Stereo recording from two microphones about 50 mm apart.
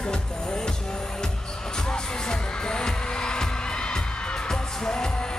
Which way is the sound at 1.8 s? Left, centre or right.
Centre.